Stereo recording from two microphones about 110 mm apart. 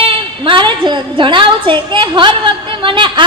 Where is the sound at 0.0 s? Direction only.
55° right (ahead or behind).